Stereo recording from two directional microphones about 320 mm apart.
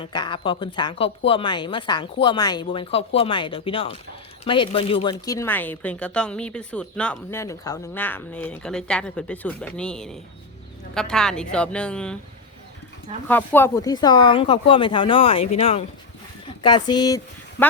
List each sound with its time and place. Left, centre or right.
0.0 s speech: centre
13.2 s speech: centre